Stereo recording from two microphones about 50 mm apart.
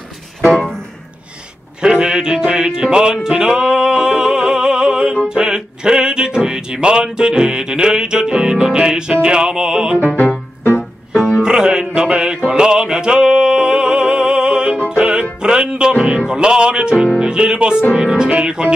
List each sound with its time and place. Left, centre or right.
1.8 s music: centre
10.0 s music: left
11.4 s music: centre